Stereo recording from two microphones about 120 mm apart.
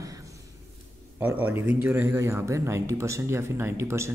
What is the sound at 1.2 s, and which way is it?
Speech, 15° right (ahead or behind).